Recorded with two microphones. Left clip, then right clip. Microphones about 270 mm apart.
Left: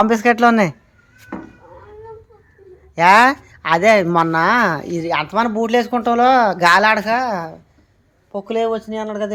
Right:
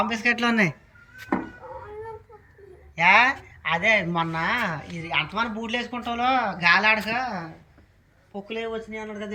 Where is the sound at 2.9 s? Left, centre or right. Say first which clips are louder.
Left 7 dB; centre.